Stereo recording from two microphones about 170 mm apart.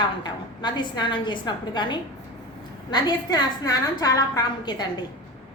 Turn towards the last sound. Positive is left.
turn(degrees=25)  # may be behind; listen again after turning